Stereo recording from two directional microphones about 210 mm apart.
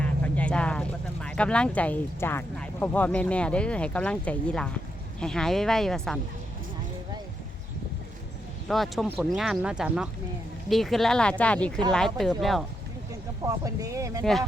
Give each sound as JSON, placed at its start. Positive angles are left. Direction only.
{"t": 0.0, "sound": "vehicle", "side_deg": 5}
{"t": 1.4, "sound": "speech", "side_deg": 5}
{"t": 8.6, "sound": "speech", "side_deg": 0}
{"t": 13.4, "sound": "speech", "side_deg": -15}